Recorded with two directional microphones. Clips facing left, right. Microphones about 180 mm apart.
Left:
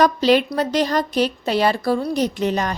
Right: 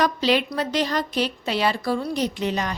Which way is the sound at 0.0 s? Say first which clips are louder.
Left 5 dB; 45° left (ahead or behind).